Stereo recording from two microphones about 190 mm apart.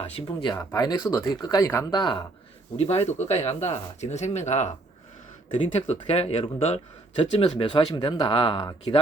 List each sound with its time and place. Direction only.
0.0 s speech: 30° left (ahead or behind)